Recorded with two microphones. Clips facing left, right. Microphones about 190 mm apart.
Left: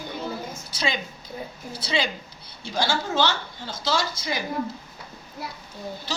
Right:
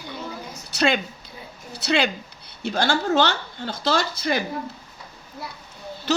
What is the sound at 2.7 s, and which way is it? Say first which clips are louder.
Speech: right 4 dB; 65° right (ahead or behind).